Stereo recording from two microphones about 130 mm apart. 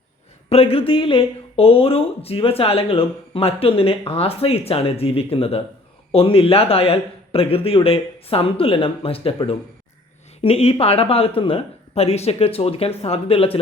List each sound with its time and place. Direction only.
0.5 s speech: 50° left (ahead or behind)